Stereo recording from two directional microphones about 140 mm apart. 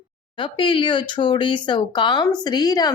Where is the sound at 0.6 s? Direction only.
35° left (ahead or behind).